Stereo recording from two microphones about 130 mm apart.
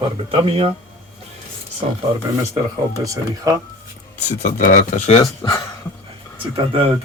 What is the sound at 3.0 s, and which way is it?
Speech, 25° right (ahead or behind).